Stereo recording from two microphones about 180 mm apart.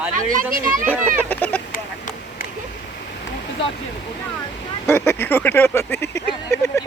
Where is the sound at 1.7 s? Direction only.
50° left (ahead or behind).